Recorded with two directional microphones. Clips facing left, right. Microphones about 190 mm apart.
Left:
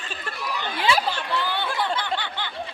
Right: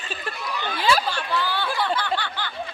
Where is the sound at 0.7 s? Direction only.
20° left (ahead or behind).